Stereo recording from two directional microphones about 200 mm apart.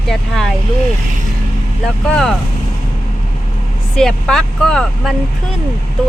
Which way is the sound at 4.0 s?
Centre (ahead or behind).